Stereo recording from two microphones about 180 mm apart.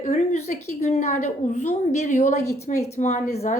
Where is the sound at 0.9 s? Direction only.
45° left (ahead or behind).